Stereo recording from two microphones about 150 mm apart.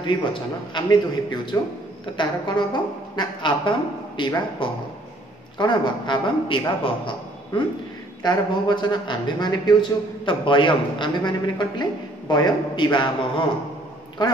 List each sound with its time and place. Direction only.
0.0 s speech: 30° left (ahead or behind)